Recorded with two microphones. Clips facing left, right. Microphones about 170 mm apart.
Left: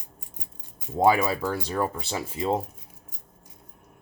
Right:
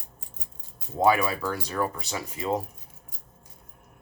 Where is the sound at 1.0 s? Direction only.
30° left (ahead or behind).